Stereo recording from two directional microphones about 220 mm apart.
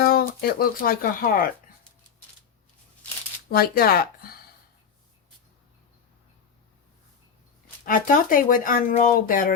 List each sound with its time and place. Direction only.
0.0 s speech: 45° left (ahead or behind)
3.5 s speech: 45° left (ahead or behind)
7.9 s speech: 40° left (ahead or behind)